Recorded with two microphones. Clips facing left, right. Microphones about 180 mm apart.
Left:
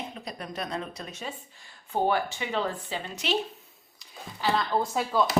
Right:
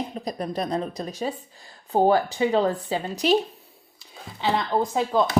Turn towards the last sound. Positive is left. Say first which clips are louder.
# right 4 dB
turn(degrees=-20)  # may be behind; listen again after turning